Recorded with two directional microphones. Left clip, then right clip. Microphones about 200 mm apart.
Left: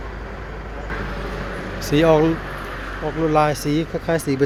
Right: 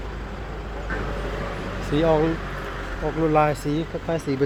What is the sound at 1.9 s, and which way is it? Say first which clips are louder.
Speech: left 5 dB; 20° left (ahead or behind).